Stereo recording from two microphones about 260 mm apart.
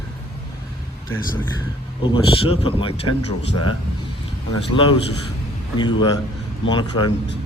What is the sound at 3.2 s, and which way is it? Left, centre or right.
Speech, left.